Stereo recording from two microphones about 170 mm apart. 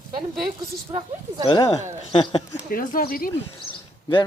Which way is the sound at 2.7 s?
55° left (ahead or behind).